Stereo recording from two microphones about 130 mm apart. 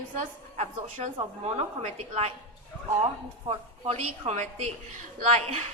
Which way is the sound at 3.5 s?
55° right (ahead or behind).